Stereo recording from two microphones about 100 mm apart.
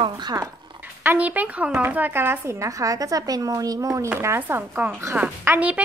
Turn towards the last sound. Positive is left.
turn(degrees=-15)  # may be behind; listen again after turning